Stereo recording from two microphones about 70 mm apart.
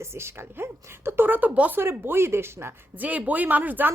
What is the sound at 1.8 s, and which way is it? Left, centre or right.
Speech, right.